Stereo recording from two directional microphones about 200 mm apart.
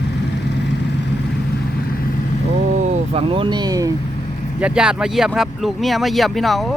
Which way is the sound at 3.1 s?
25° right (ahead or behind).